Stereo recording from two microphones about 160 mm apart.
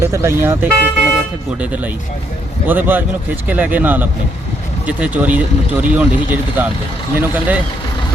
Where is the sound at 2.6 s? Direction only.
10° right (ahead or behind).